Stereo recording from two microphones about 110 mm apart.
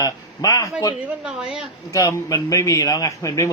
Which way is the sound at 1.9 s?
30° left (ahead or behind).